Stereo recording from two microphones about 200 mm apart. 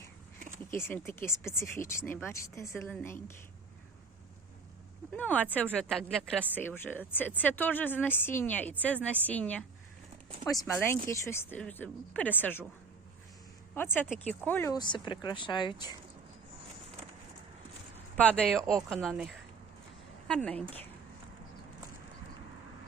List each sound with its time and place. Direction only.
0.3 s a sound: 40° right (ahead or behind)
0.7 s speech: 10° left (ahead or behind)
5.1 s speech: 10° left (ahead or behind)
13.7 s speech: 10° left (ahead or behind)
18.2 s a woman's voice: 5° left (ahead or behind)